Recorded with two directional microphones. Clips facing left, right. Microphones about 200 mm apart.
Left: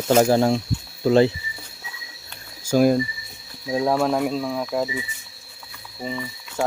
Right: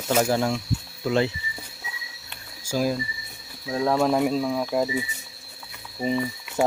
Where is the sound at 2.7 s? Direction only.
55° left (ahead or behind).